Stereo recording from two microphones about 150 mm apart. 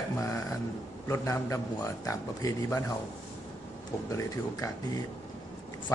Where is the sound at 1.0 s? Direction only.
20° left (ahead or behind).